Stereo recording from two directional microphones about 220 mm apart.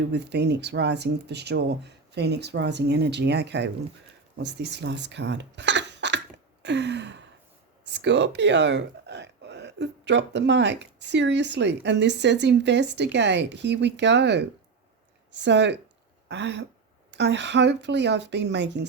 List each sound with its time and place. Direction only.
0.1 s speech: 50° right (ahead or behind)
6.6 s a sound: 50° right (ahead or behind)
7.9 s speech: 50° right (ahead or behind)